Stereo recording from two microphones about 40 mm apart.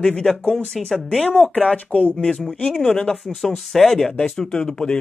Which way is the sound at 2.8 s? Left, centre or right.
Centre.